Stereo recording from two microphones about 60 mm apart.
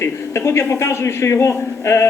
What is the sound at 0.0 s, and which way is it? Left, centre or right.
A man's voice, left.